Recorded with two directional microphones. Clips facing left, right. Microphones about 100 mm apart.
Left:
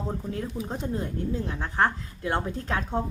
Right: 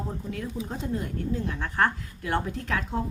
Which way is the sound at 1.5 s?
25° left (ahead or behind).